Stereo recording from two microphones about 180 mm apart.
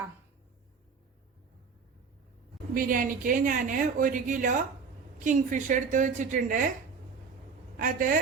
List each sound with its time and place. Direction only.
2.7 s speech: 50° right (ahead or behind)
7.8 s speech: 50° right (ahead or behind)